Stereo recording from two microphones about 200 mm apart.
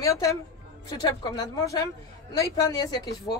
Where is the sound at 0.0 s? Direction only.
15° left (ahead or behind).